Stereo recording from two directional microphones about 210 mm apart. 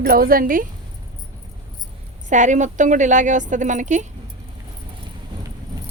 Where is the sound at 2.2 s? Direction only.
35° right (ahead or behind).